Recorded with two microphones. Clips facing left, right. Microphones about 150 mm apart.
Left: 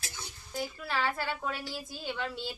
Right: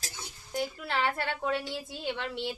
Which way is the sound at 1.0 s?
60° right (ahead or behind).